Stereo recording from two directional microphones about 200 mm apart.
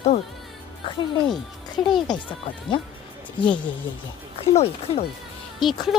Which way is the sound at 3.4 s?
25° left (ahead or behind).